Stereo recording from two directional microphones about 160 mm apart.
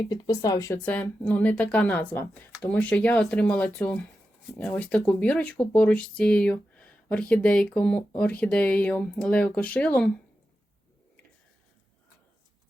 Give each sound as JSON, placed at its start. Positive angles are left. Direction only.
{"t": 0.1, "sound": "speech", "side_deg": 25}
{"t": 0.8, "sound": "speech", "side_deg": 10}